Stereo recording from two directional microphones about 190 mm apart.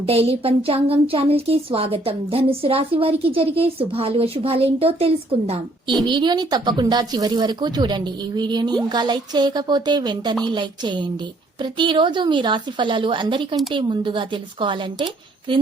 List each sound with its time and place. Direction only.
0.0 s a woman's voice: 30° right (ahead or behind)